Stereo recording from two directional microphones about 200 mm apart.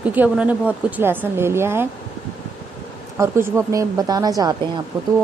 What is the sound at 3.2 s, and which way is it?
A woman's voice, 15° right (ahead or behind).